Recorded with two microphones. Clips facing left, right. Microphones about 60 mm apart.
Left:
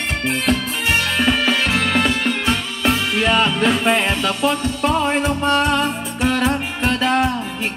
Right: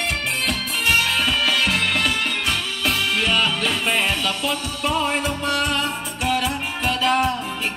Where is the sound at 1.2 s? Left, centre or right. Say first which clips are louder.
Left 3 dB; left.